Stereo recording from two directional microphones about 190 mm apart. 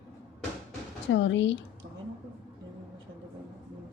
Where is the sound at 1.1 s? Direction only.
80° left.